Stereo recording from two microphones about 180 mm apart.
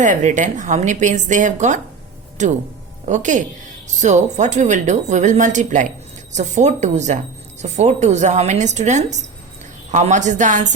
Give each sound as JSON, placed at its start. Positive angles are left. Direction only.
{"t": 0.0, "sound": "a woman's voice", "side_deg": -40}